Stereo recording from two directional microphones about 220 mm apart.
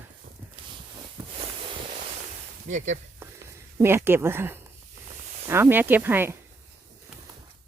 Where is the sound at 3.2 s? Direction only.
10° right (ahead or behind).